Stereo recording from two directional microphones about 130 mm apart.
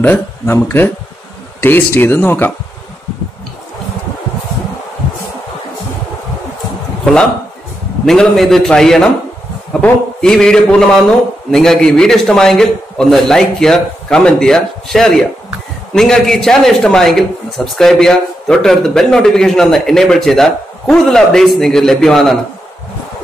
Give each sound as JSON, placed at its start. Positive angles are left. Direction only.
{"t": 0.0, "sound": "a man's voice", "side_deg": 15}
{"t": 8.0, "sound": "speech", "side_deg": 5}